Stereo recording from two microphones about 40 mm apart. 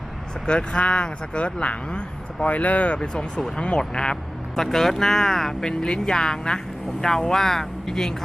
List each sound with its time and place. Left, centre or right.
0.4 s speech: left
4.6 s speech: centre